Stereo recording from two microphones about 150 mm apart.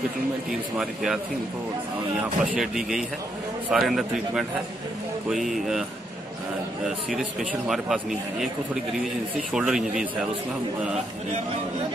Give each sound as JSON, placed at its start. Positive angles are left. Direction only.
{"t": 0.5, "sound": "speech", "side_deg": -5}
{"t": 7.1, "sound": "speech", "side_deg": 0}